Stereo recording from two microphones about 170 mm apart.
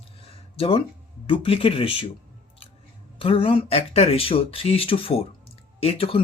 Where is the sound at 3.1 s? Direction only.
35° left (ahead or behind).